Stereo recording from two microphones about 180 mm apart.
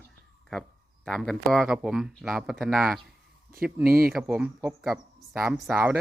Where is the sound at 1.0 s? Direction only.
5° left (ahead or behind).